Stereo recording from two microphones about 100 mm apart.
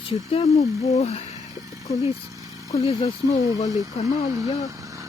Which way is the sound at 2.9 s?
90° left.